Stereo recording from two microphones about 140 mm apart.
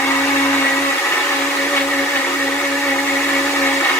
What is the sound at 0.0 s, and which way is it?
Blender, 15° left (ahead or behind).